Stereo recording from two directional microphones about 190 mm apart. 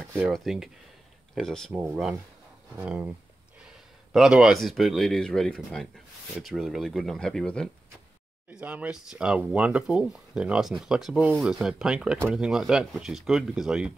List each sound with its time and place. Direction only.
0.3 s speech: centre (ahead or behind)
8.5 s speech: 10° right (ahead or behind)